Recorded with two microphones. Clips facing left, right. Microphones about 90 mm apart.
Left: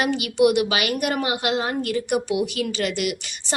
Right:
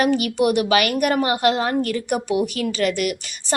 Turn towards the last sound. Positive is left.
turn(degrees=-45)  # may be behind; listen again after turning